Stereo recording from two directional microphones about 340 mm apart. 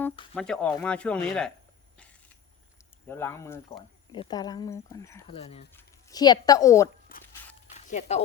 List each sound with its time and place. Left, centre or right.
0.0 s speech: centre
3.1 s speech: centre
7.9 s speech: centre